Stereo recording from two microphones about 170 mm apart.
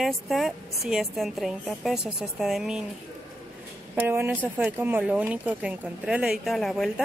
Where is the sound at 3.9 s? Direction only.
10° right (ahead or behind).